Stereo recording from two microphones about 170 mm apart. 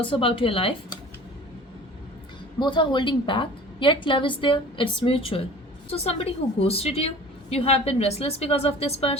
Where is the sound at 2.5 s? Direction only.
25° left (ahead or behind).